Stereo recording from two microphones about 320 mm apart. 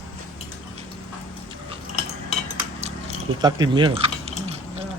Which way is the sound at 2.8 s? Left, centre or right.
Centre.